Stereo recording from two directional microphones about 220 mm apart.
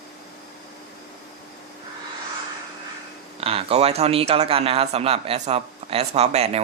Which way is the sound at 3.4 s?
25° right (ahead or behind).